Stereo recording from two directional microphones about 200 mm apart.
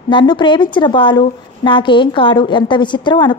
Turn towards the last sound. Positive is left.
turn(degrees=25)  # may be behind; listen again after turning